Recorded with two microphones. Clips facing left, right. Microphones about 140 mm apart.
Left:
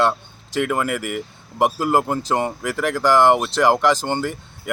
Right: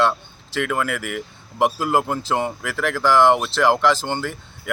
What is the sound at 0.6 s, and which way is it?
Speech, 5° left (ahead or behind).